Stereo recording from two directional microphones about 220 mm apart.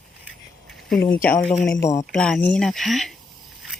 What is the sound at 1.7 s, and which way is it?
Speech, 15° left (ahead or behind).